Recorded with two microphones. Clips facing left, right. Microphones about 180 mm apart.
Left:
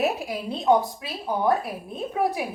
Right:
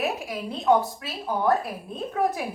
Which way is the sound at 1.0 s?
15° left (ahead or behind).